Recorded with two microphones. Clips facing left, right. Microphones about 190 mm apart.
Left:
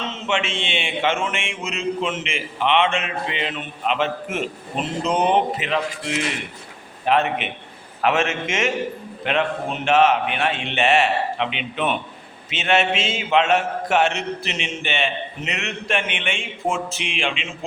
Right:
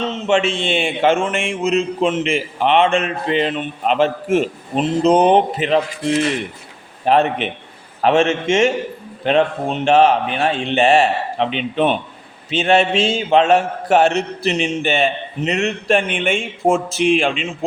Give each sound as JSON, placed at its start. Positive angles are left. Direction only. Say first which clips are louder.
{"t": 0.0, "sound": "a man's voice", "louder": "right 8 dB", "side_deg": -35}